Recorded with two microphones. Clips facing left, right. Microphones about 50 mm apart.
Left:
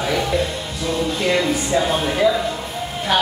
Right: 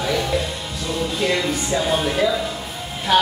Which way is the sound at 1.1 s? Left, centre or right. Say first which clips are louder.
Left 1 dB; centre.